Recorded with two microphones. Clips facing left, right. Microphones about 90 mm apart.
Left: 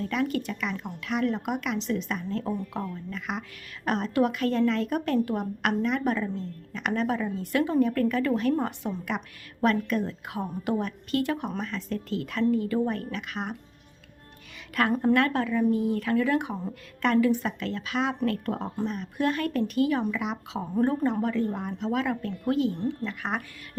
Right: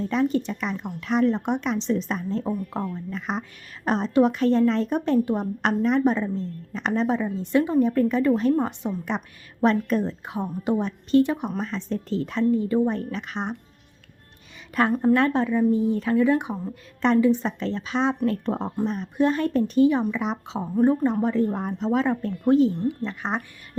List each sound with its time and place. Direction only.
0.0 s a woman's voice: 25° right (ahead or behind)
2.4 s a woman's voice: 15° right (ahead or behind)
2.9 s a woman's voice: 30° right (ahead or behind)
14.8 s a woman's voice: 25° right (ahead or behind)
20.2 s speech: 30° right (ahead or behind)
20.6 s a woman's voice: 15° right (ahead or behind)
21.2 s a woman's voice: 35° right (ahead or behind)